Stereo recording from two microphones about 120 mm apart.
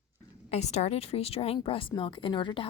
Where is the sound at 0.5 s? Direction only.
65° left (ahead or behind).